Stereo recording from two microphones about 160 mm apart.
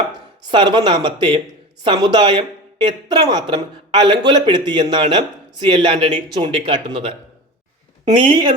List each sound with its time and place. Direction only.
0.4 s speech: 30° right (ahead or behind)
8.2 s speech: 30° right (ahead or behind)